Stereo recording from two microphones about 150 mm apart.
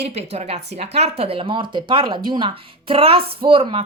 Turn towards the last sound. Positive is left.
turn(degrees=-35)  # may be behind; listen again after turning